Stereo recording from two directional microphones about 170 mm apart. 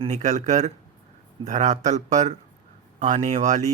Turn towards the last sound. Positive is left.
turn(degrees=-45)  # may be behind; listen again after turning